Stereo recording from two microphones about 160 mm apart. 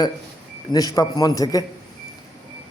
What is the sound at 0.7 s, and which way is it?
Speech, 25° left (ahead or behind).